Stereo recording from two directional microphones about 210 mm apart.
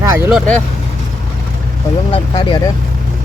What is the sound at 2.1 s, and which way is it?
Speech, 20° left (ahead or behind).